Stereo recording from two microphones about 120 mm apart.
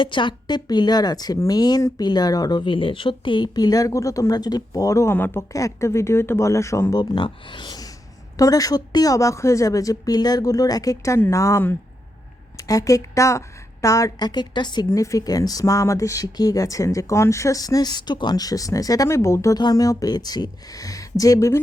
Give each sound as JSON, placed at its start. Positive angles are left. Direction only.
{"t": 0.0, "sound": "speech", "side_deg": 45}
{"t": 7.0, "sound": "speech", "side_deg": 40}
{"t": 14.8, "sound": "speech", "side_deg": 25}